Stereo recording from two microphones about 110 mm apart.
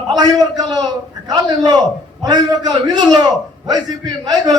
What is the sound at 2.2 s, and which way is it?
A man's voice, 40° right (ahead or behind).